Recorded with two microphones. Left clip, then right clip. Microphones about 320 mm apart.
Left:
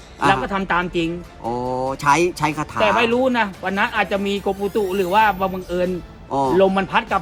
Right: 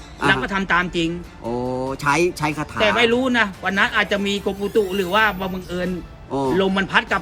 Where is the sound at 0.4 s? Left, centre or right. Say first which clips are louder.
Right 1 dB; centre.